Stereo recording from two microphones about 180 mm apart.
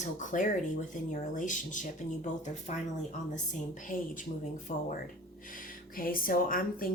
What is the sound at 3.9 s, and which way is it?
Speech, 50° left (ahead or behind).